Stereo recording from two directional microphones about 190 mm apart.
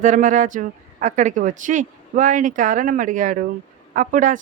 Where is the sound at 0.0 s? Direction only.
40° right (ahead or behind).